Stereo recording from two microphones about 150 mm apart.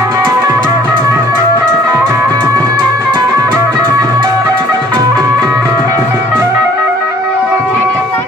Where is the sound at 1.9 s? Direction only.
20° right (ahead or behind).